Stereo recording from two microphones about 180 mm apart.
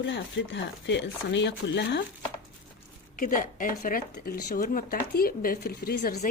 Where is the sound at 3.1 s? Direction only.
50° left (ahead or behind).